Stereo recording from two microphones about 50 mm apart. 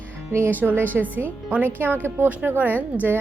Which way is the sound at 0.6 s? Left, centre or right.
Right.